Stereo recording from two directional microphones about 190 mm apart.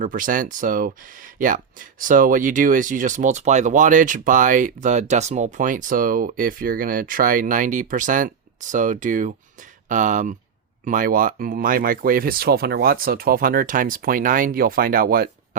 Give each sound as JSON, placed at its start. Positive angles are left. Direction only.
{"t": 0.0, "sound": "speech", "side_deg": -45}